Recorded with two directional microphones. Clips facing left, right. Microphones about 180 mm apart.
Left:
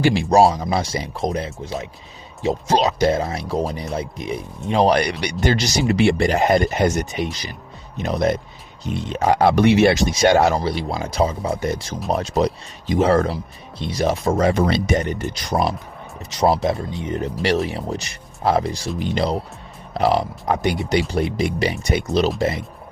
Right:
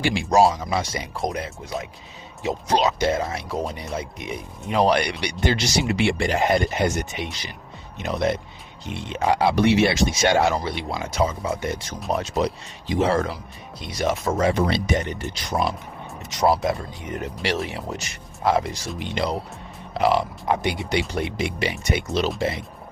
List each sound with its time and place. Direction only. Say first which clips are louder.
0.0 s speech: left 4 dB; 40° left (ahead or behind); by 9.9 s 55° left (ahead or behind)
9.9 s speech: left 4 dB; 40° left (ahead or behind)
16.3 s speech: left 2 dB; 30° left (ahead or behind)